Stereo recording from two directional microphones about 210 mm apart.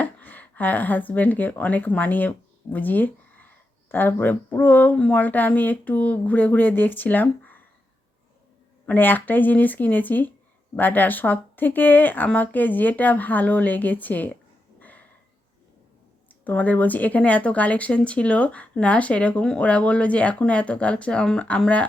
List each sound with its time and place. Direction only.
0.0 s speech: 10° left (ahead or behind)
8.9 s speech: 10° left (ahead or behind)
14.8 s a sound: 10° left (ahead or behind)
16.3 s speech: 10° left (ahead or behind)